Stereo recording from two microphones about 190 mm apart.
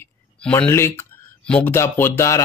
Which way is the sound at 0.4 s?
5° left (ahead or behind).